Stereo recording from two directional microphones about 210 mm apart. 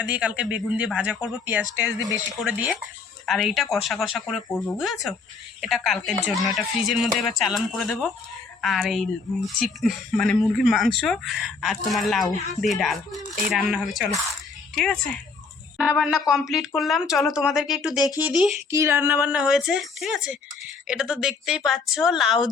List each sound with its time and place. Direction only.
0.0 s speech: 5° right (ahead or behind)
1.6 s speech: 15° left (ahead or behind)
2.4 s speech: 5° right (ahead or behind)
16.3 s speech: centre (ahead or behind)